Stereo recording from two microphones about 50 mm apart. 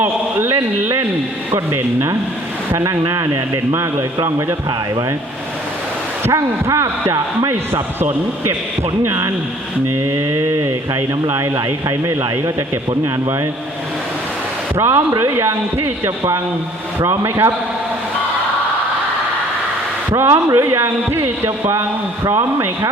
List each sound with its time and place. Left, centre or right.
0.0 s a sound: right
2.7 s speech: right
6.3 s a man's voice: right
9.0 s a man's voice: right
10.0 s speech: right
14.8 s a man's voice: right
17.0 s a man's voice: right
20.1 s speech: right
20.7 s a man's voice: right